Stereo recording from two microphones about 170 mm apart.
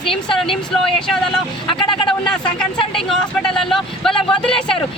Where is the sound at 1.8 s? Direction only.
30° left (ahead or behind).